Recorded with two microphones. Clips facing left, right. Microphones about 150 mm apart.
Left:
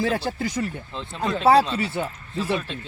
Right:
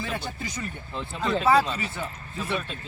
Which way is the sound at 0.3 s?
65° left (ahead or behind).